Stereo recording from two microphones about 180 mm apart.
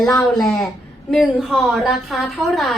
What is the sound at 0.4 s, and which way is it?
A woman's voice, 5° left (ahead or behind).